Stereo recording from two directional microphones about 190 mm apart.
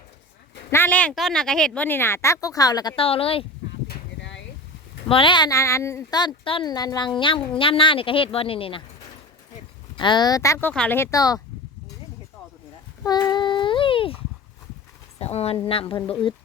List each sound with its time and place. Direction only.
0.7 s speech: 10° left (ahead or behind); by 3.4 s 30° left (ahead or behind)
3.8 s a sound: 65° left (ahead or behind)
5.0 s speech: 25° left (ahead or behind)
9.9 s speech: 25° left (ahead or behind)
13.1 s child singing: 20° left (ahead or behind)
15.2 s speech: 35° left (ahead or behind)